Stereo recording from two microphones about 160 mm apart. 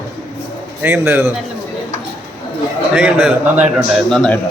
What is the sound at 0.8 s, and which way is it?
Speech, 10° right (ahead or behind).